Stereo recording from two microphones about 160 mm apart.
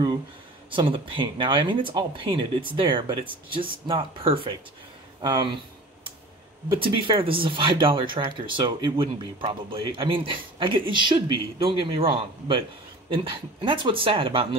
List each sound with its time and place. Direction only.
0.7 s speech: 30° right (ahead or behind)
6.7 s speech: 30° right (ahead or behind)